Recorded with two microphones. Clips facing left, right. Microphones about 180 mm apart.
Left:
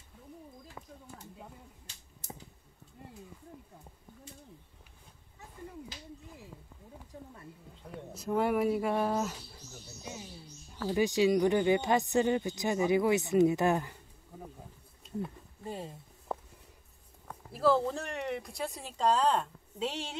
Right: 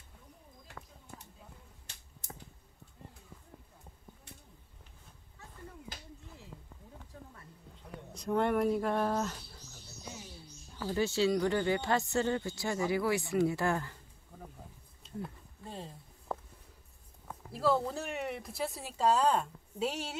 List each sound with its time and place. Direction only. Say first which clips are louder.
0.8 s a sound: left 1 dB; 15° left (ahead or behind)
5.9 s finger snapping: left 1 dB; 50° right (ahead or behind)
8.1 s speech: left 1 dB; 5° left (ahead or behind)
10.9 s speech: left 3 dB; 15° left (ahead or behind)
15.0 s a sound: left 4 dB; 10° left (ahead or behind)
17.3 s speech: left 3 dB; centre (ahead or behind)